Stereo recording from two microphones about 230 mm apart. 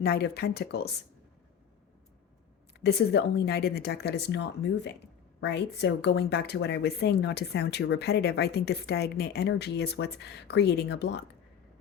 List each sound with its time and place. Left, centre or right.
0.0 s a woman's voice: left
2.8 s a woman's voice: left